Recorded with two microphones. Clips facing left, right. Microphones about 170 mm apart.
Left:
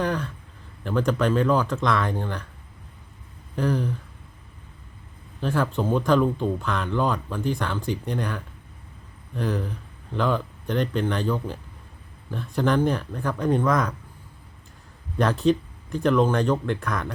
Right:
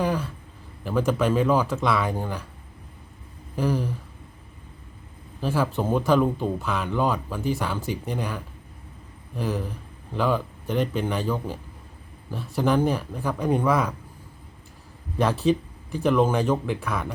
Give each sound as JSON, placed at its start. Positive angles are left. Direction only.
{"t": 0.0, "sound": "a man's voice", "side_deg": -5}
{"t": 3.5, "sound": "a sound", "side_deg": -5}
{"t": 5.4, "sound": "speech", "side_deg": -5}
{"t": 12.5, "sound": "speech", "side_deg": -5}
{"t": 15.2, "sound": "speech", "side_deg": -5}